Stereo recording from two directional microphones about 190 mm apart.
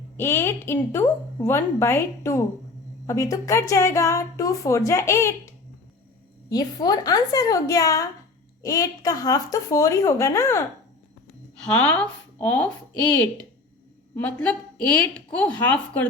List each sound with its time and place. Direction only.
0.2 s a woman's voice: 10° left (ahead or behind)
11.6 s a woman's voice: 5° left (ahead or behind)
14.2 s a woman's voice: 10° left (ahead or behind)